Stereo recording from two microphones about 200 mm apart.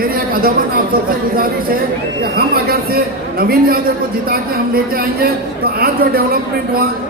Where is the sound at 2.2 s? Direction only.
50° right (ahead or behind).